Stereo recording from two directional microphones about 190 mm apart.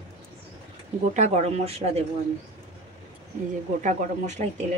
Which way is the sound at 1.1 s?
35° right (ahead or behind).